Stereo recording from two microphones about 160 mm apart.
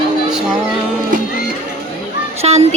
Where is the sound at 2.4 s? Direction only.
40° right (ahead or behind).